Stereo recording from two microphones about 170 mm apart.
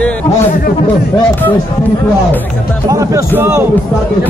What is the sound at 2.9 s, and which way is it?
Music, 20° right (ahead or behind).